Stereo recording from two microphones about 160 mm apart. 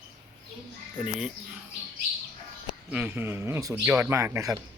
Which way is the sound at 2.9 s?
10° right (ahead or behind).